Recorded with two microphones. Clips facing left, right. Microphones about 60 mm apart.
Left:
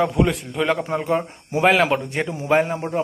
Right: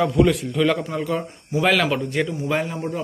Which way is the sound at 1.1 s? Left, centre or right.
Left.